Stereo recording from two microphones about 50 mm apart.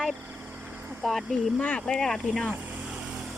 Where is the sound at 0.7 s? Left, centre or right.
Right.